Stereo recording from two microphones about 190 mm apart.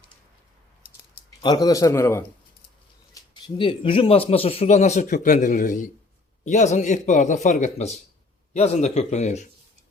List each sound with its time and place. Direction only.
1.4 s a man's voice: 20° left (ahead or behind)
3.2 s a man's voice: 25° left (ahead or behind)